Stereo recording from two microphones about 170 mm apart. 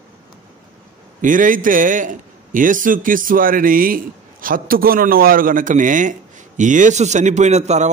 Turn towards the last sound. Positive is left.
turn(degrees=-40)  # may be behind; listen again after turning